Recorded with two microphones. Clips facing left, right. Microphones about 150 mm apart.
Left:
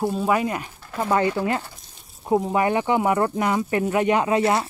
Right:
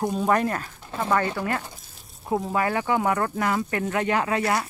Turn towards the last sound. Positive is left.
turn(degrees=25)  # may be behind; listen again after turning